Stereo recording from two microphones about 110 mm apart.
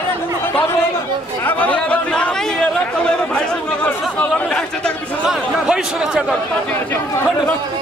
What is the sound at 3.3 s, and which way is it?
Chatter, 15° left (ahead or behind).